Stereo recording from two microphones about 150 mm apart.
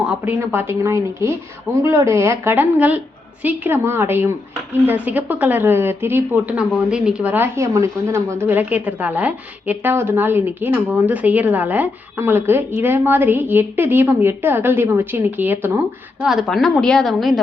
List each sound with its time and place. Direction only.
0.3 s a woman's voice: 15° right (ahead or behind)
16.2 s a woman's voice: centre (ahead or behind)